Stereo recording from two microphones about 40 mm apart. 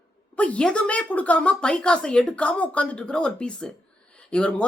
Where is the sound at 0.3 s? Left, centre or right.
Left.